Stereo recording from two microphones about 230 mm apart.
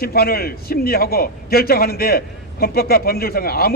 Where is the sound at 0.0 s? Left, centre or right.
Left.